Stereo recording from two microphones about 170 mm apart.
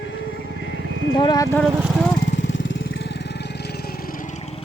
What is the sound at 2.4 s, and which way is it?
Vehicle, 90° left.